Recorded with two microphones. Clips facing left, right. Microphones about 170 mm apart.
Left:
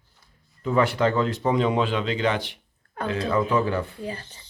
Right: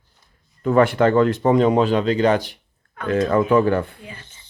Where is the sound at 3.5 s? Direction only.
55° right (ahead or behind).